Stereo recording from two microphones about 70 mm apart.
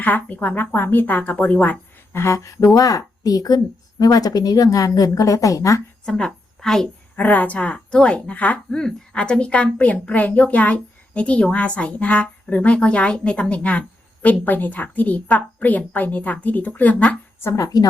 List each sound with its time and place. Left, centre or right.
0.0 s a woman's voice: left
2.1 s a sound: left
2.7 s a woman's voice: left
6.1 s a woman's voice: centre
7.2 s a woman's voice: left
17.6 s a woman's voice: left